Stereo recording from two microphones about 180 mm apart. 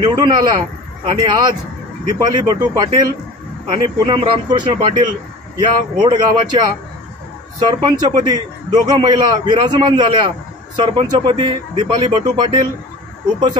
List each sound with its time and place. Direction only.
0.0 s a man's voice: 25° right (ahead or behind)